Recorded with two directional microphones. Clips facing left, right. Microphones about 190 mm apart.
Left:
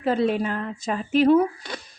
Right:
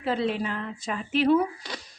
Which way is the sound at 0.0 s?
45° left (ahead or behind).